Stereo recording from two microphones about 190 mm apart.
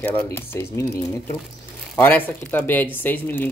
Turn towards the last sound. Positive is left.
turn(degrees=10)  # may be behind; listen again after turning